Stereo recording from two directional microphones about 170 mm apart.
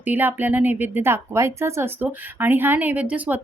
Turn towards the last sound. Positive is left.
turn(degrees=-10)  # may be behind; listen again after turning